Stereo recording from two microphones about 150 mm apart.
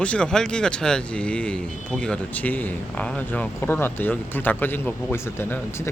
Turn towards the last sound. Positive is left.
turn(degrees=15)  # may be behind; listen again after turning